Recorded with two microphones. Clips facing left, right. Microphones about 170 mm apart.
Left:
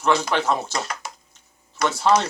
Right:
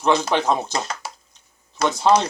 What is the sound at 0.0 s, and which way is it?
Speech, 20° right (ahead or behind).